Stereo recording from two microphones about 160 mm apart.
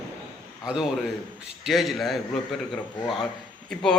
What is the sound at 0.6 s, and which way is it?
A man's voice, 5° right (ahead or behind).